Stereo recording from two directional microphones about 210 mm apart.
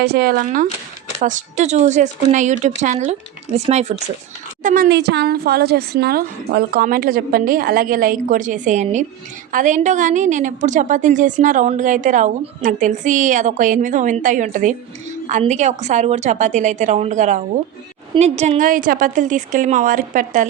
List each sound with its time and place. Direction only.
0.0 s a woman's voice: 45° right (ahead or behind); by 3.9 s 30° right (ahead or behind)
4.6 s a woman's voice: 40° right (ahead or behind)